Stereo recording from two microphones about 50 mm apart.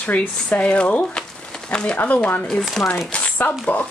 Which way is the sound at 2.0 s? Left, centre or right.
Left.